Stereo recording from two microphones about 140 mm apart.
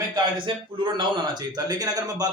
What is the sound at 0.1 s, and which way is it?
Speech, 35° right (ahead or behind).